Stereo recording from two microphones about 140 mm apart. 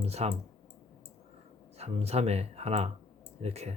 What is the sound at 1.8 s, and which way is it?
Speech, 50° right (ahead or behind).